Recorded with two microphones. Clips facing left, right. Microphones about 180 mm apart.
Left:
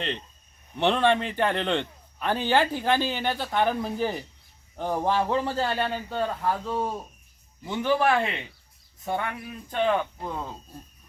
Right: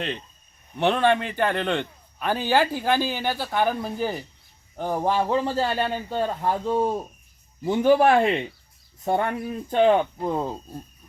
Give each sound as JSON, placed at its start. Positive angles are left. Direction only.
{"t": 0.8, "sound": "a man's voice", "side_deg": -5}
{"t": 7.6, "sound": "speech", "side_deg": -40}